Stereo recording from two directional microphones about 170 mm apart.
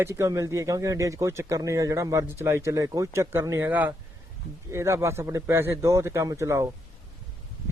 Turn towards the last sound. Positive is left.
turn(degrees=-15)  # may be behind; listen again after turning